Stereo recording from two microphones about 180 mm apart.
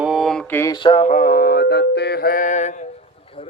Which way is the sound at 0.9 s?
35° left (ahead or behind).